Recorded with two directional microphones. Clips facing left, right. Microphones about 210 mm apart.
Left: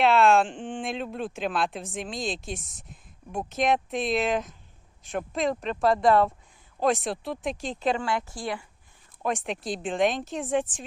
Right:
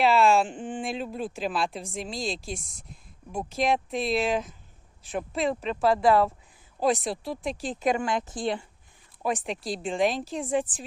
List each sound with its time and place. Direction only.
0.0 s speech: centre (ahead or behind); by 8.6 s 20° right (ahead or behind)
9.2 s speech: centre (ahead or behind)